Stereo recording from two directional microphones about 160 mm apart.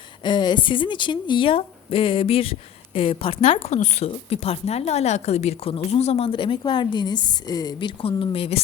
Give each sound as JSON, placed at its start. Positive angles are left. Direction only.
{"t": 0.3, "sound": "speech", "side_deg": 30}